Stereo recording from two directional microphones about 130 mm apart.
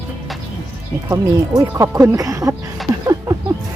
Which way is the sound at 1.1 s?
25° right (ahead or behind).